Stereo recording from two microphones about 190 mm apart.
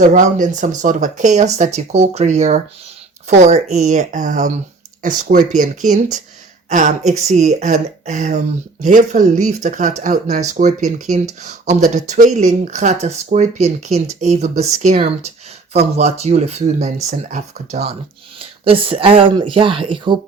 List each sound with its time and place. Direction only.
0.0 s speech: 40° right (ahead or behind)
18.6 s speech: 30° right (ahead or behind)